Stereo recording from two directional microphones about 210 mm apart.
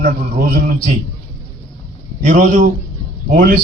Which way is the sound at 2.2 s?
35° right (ahead or behind).